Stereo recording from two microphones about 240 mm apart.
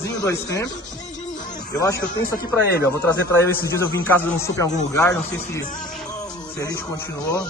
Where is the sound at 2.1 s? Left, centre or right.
Left.